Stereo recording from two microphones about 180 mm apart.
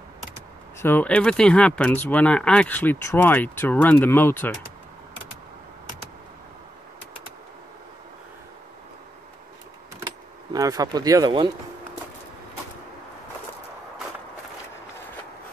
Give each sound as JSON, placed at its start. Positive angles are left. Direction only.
{"t": 0.7, "sound": "speech", "side_deg": 10}
{"t": 10.5, "sound": "speech", "side_deg": -20}